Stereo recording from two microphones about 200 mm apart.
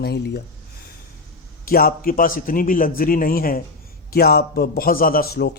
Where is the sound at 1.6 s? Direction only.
50° left (ahead or behind).